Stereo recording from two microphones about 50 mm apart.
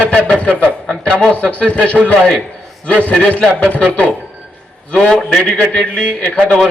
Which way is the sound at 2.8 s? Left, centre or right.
Left.